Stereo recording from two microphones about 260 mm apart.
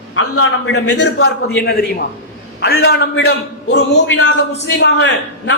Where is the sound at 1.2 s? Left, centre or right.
Left.